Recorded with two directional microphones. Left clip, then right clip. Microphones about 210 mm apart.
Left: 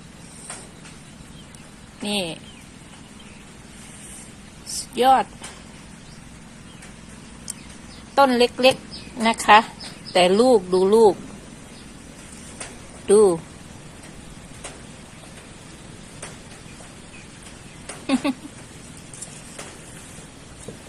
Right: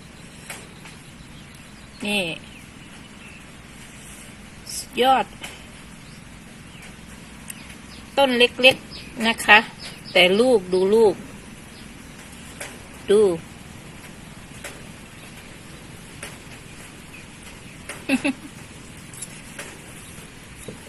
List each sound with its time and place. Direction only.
2.0 s speech: 5° left (ahead or behind)
4.9 s speech: 5° left (ahead or behind)
8.1 s speech: 10° left (ahead or behind)
13.0 s speech: 20° left (ahead or behind)
18.0 s a sound: 5° left (ahead or behind)